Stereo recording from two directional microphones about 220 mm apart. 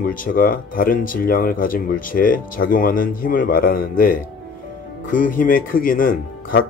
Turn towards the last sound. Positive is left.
turn(degrees=40)  # may be behind; listen again after turning